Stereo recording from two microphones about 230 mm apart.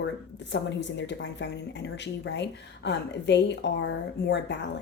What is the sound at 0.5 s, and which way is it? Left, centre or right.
A woman's voice, left.